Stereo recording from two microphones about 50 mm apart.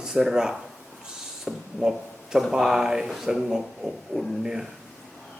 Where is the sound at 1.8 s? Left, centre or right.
Centre.